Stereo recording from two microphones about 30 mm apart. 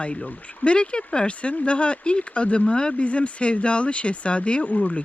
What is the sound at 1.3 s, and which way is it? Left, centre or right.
Speech, left.